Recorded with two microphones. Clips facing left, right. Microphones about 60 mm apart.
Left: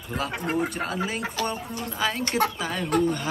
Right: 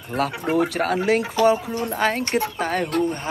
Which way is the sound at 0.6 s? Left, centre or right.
Right.